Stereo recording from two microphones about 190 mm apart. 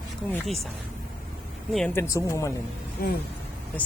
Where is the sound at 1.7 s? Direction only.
10° left (ahead or behind).